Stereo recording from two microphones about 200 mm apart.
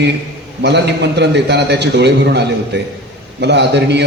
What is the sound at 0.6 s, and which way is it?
A man's voice, 60° right (ahead or behind).